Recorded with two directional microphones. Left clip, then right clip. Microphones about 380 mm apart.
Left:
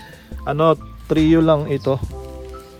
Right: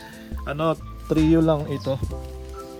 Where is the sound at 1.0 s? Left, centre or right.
Right.